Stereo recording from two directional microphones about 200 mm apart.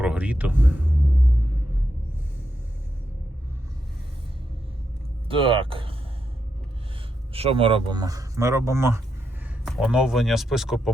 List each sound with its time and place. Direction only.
0.0 s vehicle: 5° right (ahead or behind)
5.3 s speech: 25° right (ahead or behind)
7.3 s speech: 30° right (ahead or behind); by 10.9 s centre (ahead or behind)